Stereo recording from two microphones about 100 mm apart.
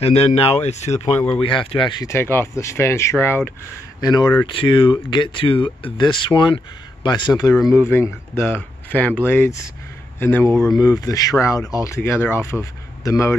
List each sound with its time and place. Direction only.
0.0 s speech: 90° left
1.4 s speech: 60° left (ahead or behind)
2.0 s speech: 25° left (ahead or behind)
4.0 s speech: 45° left (ahead or behind)
4.5 s speech: 60° left (ahead or behind)
7.4 s speech: 35° left (ahead or behind); by 9.3 s 15° left (ahead or behind)
9.3 s speech: 25° left (ahead or behind)
10.5 s speech: 5° left (ahead or behind)
10.8 s speech: 35° left (ahead or behind)
12.0 s speech: 20° left (ahead or behind)